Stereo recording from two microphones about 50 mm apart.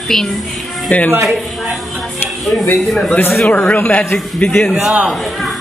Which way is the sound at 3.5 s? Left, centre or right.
Left.